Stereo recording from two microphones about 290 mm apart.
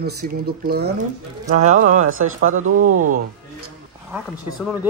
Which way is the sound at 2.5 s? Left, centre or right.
Right.